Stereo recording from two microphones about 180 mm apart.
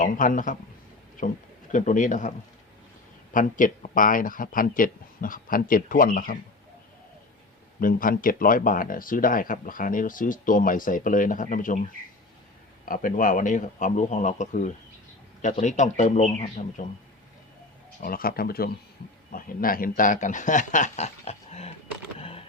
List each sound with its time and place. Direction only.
0.0 s speech: 45° left (ahead or behind)
1.7 s speech: 45° left (ahead or behind)
3.3 s speech: 45° left (ahead or behind)
7.8 s speech: 50° left (ahead or behind)
12.8 s a man's voice: 50° left (ahead or behind)
18.0 s speech: 55° left (ahead or behind); by 21.7 s 35° left (ahead or behind)
22.2 s typing: 30° left (ahead or behind)